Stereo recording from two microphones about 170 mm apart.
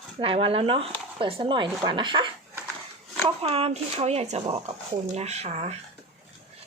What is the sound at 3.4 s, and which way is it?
Speech, 35° right (ahead or behind).